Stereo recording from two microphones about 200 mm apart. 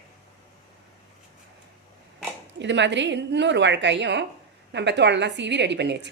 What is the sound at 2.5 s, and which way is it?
A woman's voice, 60° right (ahead or behind).